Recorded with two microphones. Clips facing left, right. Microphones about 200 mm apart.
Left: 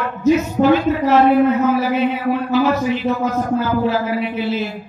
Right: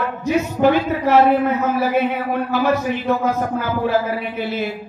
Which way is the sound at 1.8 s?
50° right (ahead or behind).